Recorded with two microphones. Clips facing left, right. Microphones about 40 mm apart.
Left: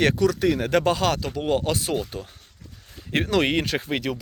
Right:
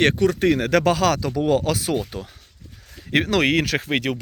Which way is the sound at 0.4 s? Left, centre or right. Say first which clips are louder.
Right 3 dB; right.